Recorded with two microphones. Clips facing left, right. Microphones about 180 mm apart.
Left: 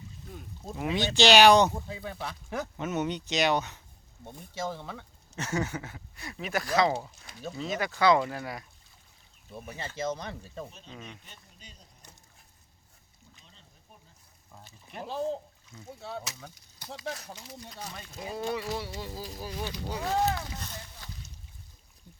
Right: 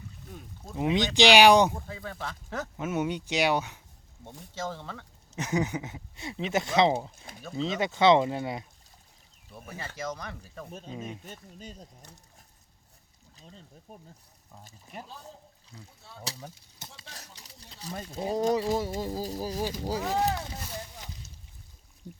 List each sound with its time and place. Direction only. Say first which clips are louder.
0.8 s speech: right 2 dB; 20° right (ahead or behind)
1.7 s speech: left 1 dB; 15° left (ahead or behind)
2.7 s speech: right 2 dB; 10° right (ahead or behind)
4.5 s speech: left 1 dB; 10° left (ahead or behind)
5.4 s speech: right 3 dB; 15° right (ahead or behind)
9.5 s speech: left 2 dB; 25° left (ahead or behind)
10.7 s speech: right 7 dB; 45° right (ahead or behind)
13.3 s a sound: right 11 dB; 40° right (ahead or behind)
13.9 s speech: right 9 dB; 40° right (ahead or behind)
15.0 s speech: left 15 dB; 80° left
16.2 s speech: right 3 dB; 35° right (ahead or behind)
17.9 s speech: right 10 dB; 35° right (ahead or behind)
20.2 s speech: even; 10° right (ahead or behind)